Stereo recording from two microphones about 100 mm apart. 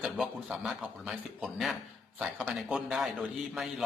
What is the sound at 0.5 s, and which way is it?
A man's voice, centre (ahead or behind).